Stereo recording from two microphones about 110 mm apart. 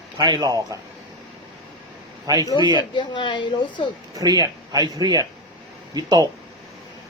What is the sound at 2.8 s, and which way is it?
A woman's voice, 45° left (ahead or behind).